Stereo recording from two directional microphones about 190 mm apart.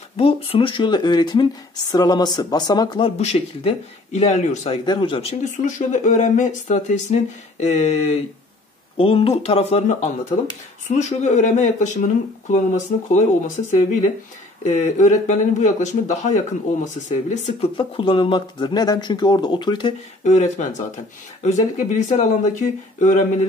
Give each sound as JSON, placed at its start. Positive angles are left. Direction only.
{"t": 0.2, "sound": "speech", "side_deg": 30}
{"t": 3.2, "sound": "speech", "side_deg": 35}
{"t": 20.2, "sound": "speech", "side_deg": 40}